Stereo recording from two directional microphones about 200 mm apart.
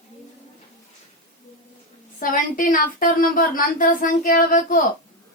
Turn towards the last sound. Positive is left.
turn(degrees=40)  # may be behind; listen again after turning